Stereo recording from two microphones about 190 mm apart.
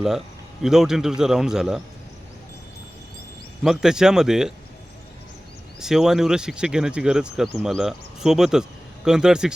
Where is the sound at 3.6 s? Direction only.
5° right (ahead or behind).